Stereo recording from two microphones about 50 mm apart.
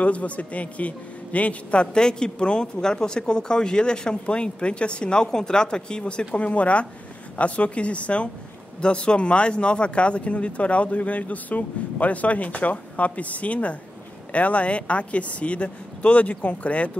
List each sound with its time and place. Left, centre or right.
0.0 s a man's voice: left